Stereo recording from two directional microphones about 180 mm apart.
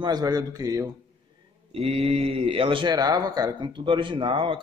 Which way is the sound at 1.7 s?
30° right (ahead or behind).